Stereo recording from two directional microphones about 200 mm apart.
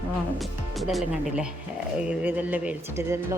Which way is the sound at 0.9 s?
Centre (ahead or behind).